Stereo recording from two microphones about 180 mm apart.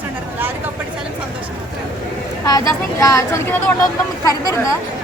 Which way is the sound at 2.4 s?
20° left (ahead or behind).